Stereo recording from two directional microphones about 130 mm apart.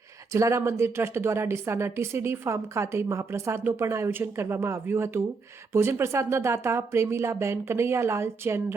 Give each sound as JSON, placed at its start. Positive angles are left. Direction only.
{"t": 0.3, "sound": "a woman's voice", "side_deg": -20}